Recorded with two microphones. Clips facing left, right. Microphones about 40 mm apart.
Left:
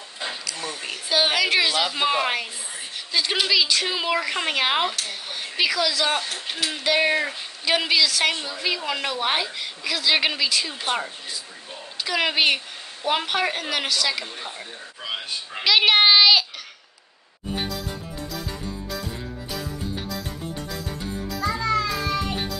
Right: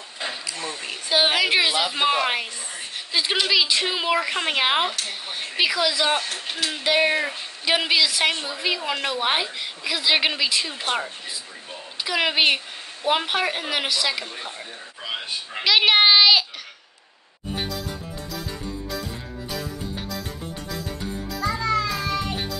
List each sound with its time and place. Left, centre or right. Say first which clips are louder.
1.1 s a woman's voice: right 1 dB; centre
15.6 s a sound: even; centre
21.0 s music: left 1 dB; centre